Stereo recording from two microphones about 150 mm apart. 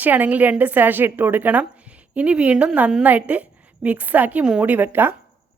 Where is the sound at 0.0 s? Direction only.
10° right (ahead or behind).